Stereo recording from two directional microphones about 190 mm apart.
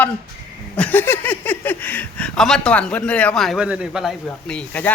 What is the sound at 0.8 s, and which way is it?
Speech, 10° left (ahead or behind).